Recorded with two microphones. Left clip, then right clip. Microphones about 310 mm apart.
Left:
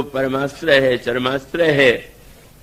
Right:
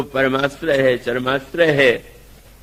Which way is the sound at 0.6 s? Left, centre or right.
Left.